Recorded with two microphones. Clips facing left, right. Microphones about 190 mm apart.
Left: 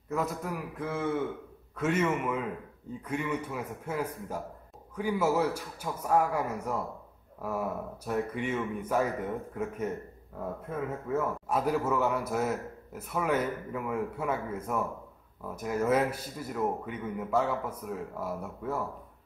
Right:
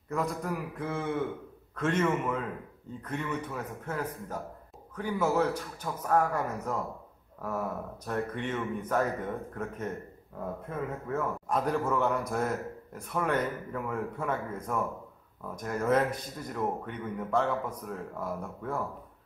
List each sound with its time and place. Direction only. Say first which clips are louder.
0.1 s a man's voice: even; centre (ahead or behind)